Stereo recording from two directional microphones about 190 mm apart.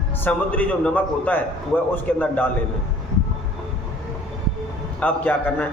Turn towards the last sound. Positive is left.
turn(degrees=10)  # may be behind; listen again after turning